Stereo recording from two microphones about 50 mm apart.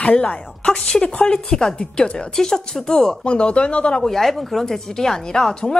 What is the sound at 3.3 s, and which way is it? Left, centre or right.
Speech, centre.